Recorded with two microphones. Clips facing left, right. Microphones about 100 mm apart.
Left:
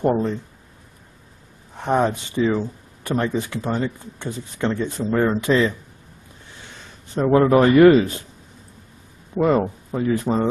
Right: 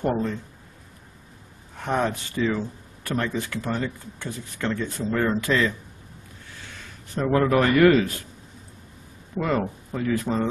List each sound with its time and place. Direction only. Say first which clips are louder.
0.0 s speech: left 5 dB; 20° left (ahead or behind)
1.8 s speech: left 5 dB; 20° left (ahead or behind)
7.2 s speech: left 5 dB; 25° left (ahead or behind)
9.4 s speech: left 6 dB; 20° left (ahead or behind)